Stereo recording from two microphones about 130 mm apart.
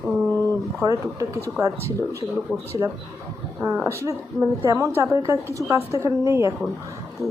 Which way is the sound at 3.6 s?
20° right (ahead or behind).